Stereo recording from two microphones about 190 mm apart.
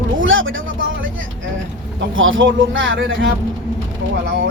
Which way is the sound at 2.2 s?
90° right.